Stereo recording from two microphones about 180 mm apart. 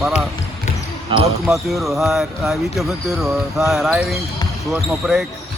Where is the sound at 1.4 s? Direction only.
Centre (ahead or behind).